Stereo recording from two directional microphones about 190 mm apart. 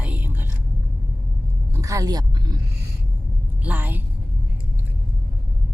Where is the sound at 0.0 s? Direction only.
10° right (ahead or behind).